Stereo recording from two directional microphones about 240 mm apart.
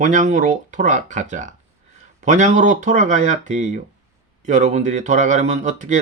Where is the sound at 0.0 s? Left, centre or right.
Right.